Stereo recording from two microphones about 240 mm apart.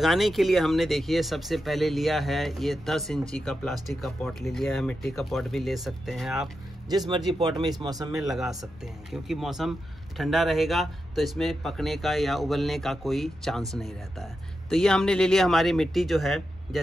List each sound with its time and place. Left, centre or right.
0.0 s speech: centre
7.3 s speech: centre
8.1 s speech: centre